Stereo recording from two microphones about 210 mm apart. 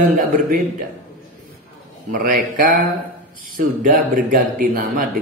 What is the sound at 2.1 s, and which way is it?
Speech, 40° right (ahead or behind).